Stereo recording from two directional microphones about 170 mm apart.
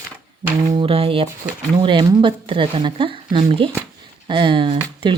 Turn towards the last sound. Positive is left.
turn(degrees=-30)  # may be behind; listen again after turning